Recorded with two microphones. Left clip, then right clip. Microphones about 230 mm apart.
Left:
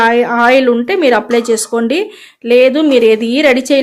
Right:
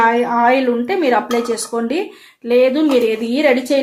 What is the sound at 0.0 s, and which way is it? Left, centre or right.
Speech, left.